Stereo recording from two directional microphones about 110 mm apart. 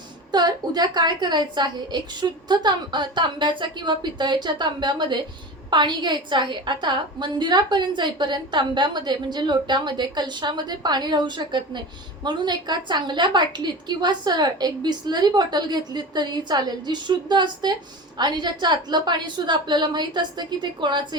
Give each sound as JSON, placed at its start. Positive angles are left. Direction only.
{"t": 0.3, "sound": "a woman's voice", "side_deg": -40}